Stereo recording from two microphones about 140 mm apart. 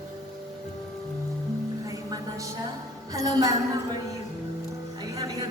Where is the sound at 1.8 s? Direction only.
25° right (ahead or behind).